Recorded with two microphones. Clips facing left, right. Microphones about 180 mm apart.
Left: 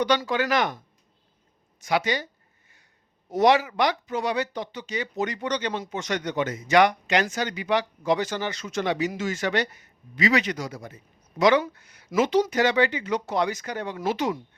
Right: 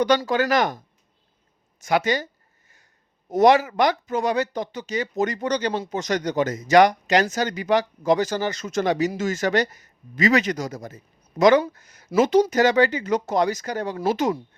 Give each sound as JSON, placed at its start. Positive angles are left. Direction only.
{"t": 0.0, "sound": "speech", "side_deg": -45}
{"t": 1.8, "sound": "speech", "side_deg": -45}
{"t": 3.2, "sound": "speech", "side_deg": -45}